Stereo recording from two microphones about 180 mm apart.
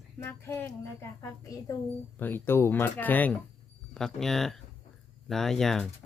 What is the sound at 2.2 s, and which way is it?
Speech, 10° left (ahead or behind).